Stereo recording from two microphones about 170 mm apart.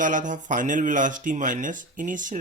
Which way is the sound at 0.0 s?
50° right (ahead or behind).